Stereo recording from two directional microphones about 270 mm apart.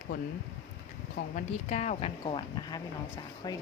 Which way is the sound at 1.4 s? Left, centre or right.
Left.